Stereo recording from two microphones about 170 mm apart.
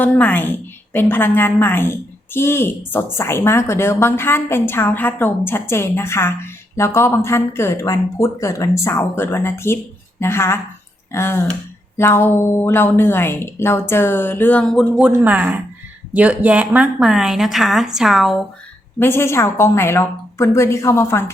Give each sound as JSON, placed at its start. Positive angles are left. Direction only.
{"t": 0.0, "sound": "a woman's voice", "side_deg": 10}
{"t": 18.9, "sound": "a woman's voice", "side_deg": 15}